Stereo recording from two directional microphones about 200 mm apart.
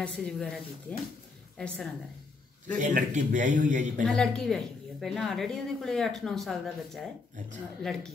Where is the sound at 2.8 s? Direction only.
35° right (ahead or behind).